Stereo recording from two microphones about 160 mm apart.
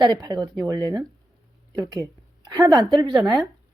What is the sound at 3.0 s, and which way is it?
Speech, 25° right (ahead or behind).